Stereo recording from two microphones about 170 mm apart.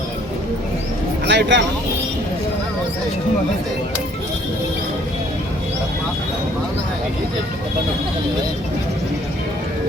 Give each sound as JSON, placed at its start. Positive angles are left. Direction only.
{"t": 1.3, "sound": "speech", "side_deg": -90}